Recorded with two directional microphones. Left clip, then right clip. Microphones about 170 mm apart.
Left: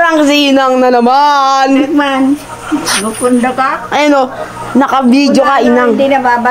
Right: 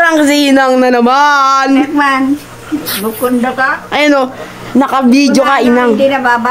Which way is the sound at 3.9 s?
5° right (ahead or behind).